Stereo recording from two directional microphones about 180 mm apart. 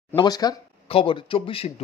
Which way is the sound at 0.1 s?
20° left (ahead or behind).